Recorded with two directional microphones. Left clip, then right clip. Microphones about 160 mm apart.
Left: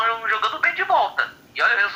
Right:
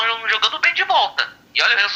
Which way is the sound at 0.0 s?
30° right (ahead or behind).